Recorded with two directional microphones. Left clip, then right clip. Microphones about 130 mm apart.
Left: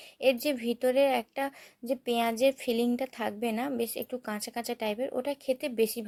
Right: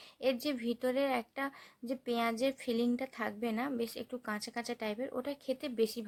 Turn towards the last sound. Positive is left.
turn(degrees=20)  # may be behind; listen again after turning